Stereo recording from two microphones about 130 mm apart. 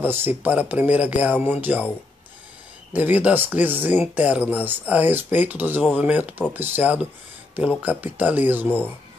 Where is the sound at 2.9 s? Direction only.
15° right (ahead or behind).